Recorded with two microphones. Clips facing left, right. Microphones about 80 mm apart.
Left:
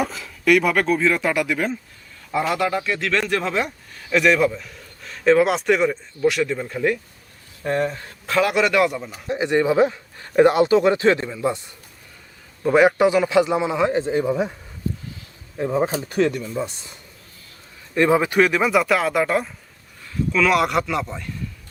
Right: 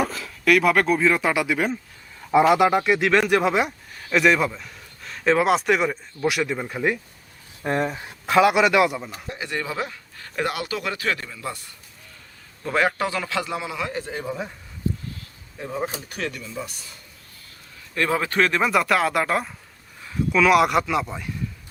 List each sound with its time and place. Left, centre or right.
0.0 s speech: centre
2.5 s speech: centre
4.1 s speech: centre
9.3 s speech: left
15.5 s speech: left; by 21.2 s centre